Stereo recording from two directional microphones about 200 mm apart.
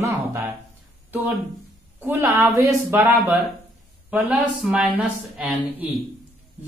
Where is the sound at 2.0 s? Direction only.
10° right (ahead or behind).